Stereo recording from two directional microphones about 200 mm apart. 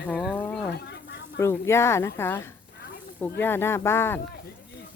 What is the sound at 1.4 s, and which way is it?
Speech, 15° left (ahead or behind).